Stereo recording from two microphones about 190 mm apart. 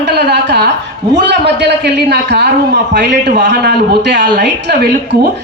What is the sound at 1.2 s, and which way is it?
Speech, 65° right (ahead or behind).